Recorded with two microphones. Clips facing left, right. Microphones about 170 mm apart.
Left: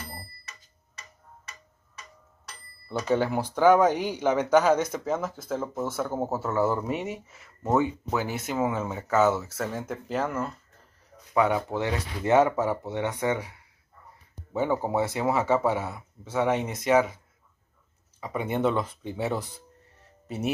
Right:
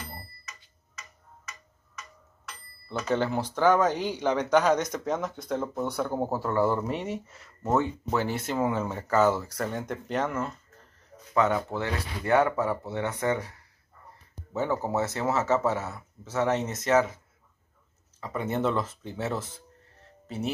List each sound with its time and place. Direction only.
0.5 s tick-tock: 30° left (ahead or behind)
3.1 s speech: 10° left (ahead or behind)
18.2 s speech: 10° left (ahead or behind)